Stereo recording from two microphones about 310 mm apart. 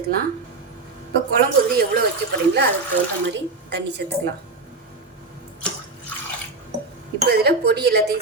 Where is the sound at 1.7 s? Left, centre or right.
Right.